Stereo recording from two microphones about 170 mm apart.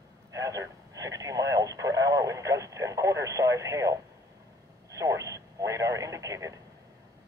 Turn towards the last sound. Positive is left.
turn(degrees=-20)  # may be behind; listen again after turning